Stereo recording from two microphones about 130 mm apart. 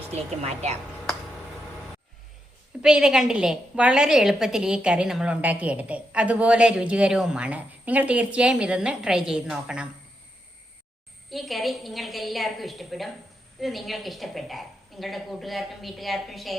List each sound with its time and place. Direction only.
0.1 s a woman's voice: 55° right (ahead or behind)
2.8 s a woman's voice: 5° right (ahead or behind)
11.3 s a woman's voice: centre (ahead or behind)